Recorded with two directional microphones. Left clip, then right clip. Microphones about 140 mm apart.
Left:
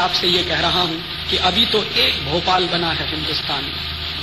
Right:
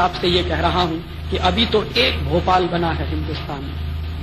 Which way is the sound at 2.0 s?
20° right (ahead or behind).